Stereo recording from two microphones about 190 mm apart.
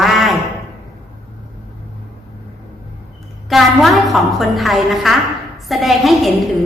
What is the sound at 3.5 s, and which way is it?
A woman's voice, centre (ahead or behind).